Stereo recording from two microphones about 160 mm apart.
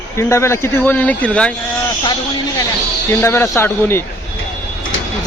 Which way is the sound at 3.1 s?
15° left (ahead or behind).